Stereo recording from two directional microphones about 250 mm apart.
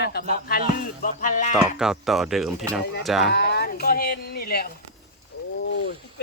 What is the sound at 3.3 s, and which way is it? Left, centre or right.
Speech, left.